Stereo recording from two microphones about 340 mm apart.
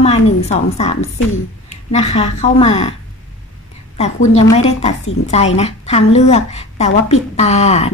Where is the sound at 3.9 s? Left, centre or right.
Centre.